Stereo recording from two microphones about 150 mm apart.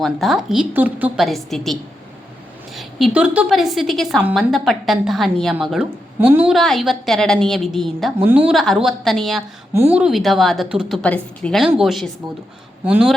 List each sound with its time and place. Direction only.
0.0 s speech: centre (ahead or behind)
6.5 s speech: centre (ahead or behind)
8.2 s speech: 10° right (ahead or behind)
8.5 s speech: centre (ahead or behind)
9.7 s speech: 15° right (ahead or behind)
10.0 s speech: centre (ahead or behind)